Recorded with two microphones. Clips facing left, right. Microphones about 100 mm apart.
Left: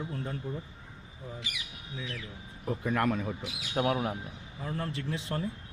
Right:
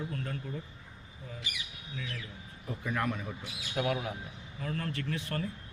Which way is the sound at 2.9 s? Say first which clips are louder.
Left 4 dB; 55° left (ahead or behind).